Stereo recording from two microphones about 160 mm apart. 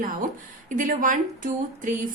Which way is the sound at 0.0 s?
60° right (ahead or behind).